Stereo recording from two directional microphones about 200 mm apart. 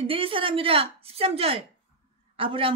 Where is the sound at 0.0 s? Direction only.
25° right (ahead or behind).